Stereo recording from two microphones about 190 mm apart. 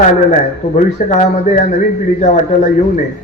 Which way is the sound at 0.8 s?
35° left (ahead or behind).